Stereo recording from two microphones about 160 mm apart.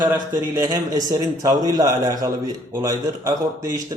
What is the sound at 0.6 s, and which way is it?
A man's voice, 20° right (ahead or behind).